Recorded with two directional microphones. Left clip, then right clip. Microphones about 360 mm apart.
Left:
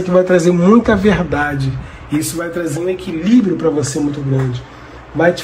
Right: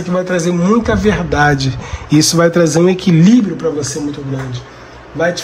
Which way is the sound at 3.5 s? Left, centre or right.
Centre.